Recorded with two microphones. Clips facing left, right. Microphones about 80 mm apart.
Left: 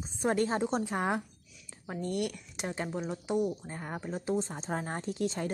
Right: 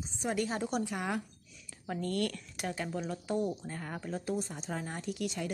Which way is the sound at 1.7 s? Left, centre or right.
Left.